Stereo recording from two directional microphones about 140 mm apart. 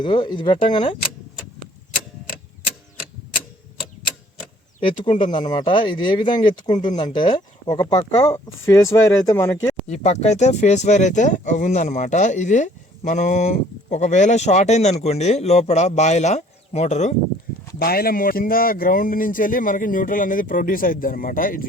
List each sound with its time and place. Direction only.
0.0 s speech: 35° left (ahead or behind)
4.8 s speech: 40° left (ahead or behind); by 9.7 s 20° left (ahead or behind)
9.9 s speech: 55° left (ahead or behind)
17.7 s speech: 90° left